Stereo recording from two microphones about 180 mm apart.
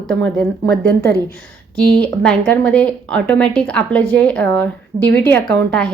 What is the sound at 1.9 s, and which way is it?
Speech, 5° left (ahead or behind).